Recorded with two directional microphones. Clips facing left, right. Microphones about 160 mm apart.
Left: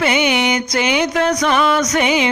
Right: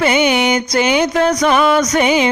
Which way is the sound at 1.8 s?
30° right (ahead or behind).